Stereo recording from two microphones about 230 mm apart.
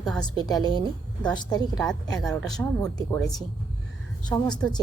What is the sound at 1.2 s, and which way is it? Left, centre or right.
A woman's voice, centre.